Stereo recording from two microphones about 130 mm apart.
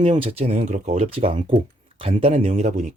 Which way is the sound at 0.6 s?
70° right (ahead or behind).